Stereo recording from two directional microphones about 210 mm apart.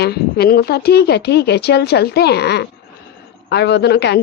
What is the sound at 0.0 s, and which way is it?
A woman's voice, 50° left (ahead or behind).